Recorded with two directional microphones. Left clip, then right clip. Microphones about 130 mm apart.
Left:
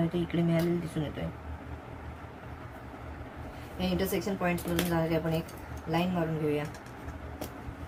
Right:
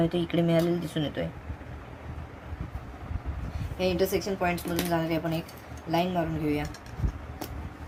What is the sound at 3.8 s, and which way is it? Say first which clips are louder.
Speech: right 5 dB; 60° right (ahead or behind).